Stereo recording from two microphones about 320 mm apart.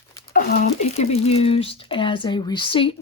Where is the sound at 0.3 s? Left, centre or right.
Left.